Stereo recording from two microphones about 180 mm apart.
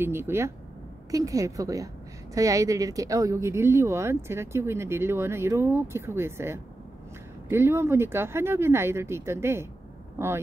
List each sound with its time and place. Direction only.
0.0 s a woman's voice: 15° right (ahead or behind)